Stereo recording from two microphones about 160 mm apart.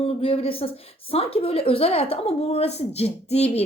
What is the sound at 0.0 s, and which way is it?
A woman's voice, 35° left (ahead or behind).